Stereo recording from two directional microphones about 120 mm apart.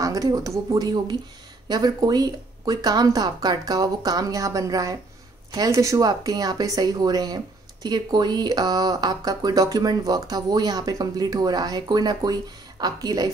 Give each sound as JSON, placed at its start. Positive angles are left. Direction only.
{"t": 0.0, "sound": "speech", "side_deg": -30}